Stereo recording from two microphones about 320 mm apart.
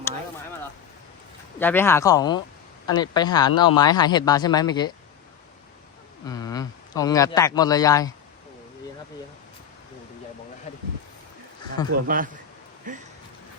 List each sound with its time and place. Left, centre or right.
1.5 s a man's voice: centre
6.2 s a man's voice: centre
11.9 s speech: right